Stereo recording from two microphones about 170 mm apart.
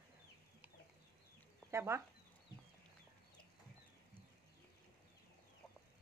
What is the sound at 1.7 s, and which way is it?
Speech, 15° right (ahead or behind).